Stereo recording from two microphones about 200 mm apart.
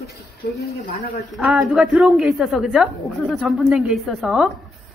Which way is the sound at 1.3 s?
Centre (ahead or behind).